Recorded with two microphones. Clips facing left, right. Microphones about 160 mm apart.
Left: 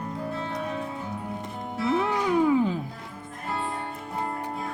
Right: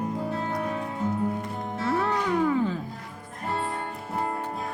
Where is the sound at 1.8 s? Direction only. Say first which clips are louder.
Left 2 dB; 10° left (ahead or behind).